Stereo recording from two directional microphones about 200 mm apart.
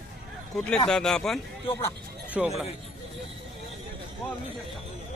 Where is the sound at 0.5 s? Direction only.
5° left (ahead or behind).